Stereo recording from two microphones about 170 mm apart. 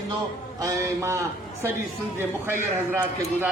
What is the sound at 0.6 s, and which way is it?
Speech, 20° right (ahead or behind).